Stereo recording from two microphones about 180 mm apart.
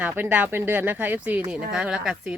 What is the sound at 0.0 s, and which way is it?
Speech, 10° right (ahead or behind).